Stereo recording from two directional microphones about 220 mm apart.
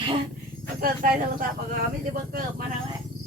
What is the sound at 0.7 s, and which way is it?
Speech, 40° right (ahead or behind).